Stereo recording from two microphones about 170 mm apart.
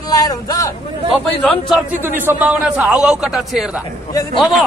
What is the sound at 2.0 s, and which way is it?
A man's voice, 10° right (ahead or behind).